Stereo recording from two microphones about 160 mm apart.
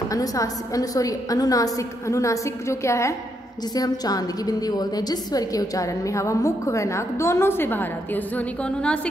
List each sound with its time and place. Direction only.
0.1 s a woman's voice: 20° left (ahead or behind)